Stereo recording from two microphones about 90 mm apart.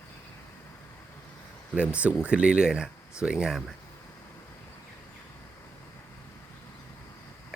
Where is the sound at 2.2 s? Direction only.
10° right (ahead or behind).